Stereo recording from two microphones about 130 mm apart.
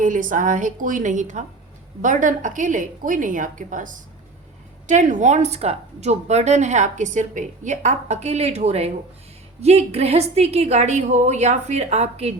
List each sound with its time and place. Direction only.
0.0 s a woman's voice: 90° right
4.9 s a woman's voice: 70° right (ahead or behind); by 12.3 s 55° right (ahead or behind)